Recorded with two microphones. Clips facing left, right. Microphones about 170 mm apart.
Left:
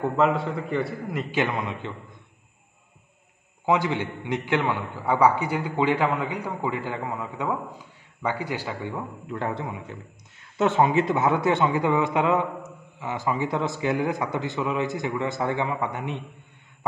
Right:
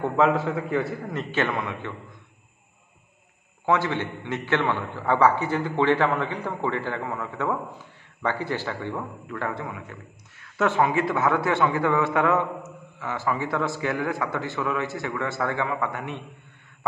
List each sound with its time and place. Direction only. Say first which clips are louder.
0.2 s a man's voice: right 2 dB; centre (ahead or behind)
1.1 s a man's voice: even; 15° left (ahead or behind)
3.6 s a man's voice: even; 15° left (ahead or behind)